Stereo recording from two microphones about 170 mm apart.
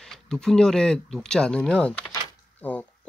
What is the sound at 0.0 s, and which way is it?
Speech, 5° left (ahead or behind).